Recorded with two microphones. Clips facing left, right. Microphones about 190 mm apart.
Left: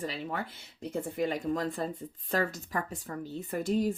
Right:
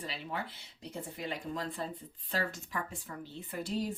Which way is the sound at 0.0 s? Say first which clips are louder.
Left 5 dB; 45° left (ahead or behind).